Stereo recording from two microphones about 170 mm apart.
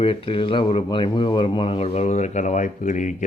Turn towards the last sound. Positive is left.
turn(degrees=45)  # may be behind; listen again after turning